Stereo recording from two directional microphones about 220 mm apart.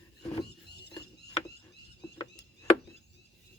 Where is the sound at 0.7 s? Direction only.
50° left (ahead or behind).